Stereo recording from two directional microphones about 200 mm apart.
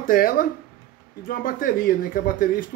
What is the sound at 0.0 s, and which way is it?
A man's voice, 45° left (ahead or behind).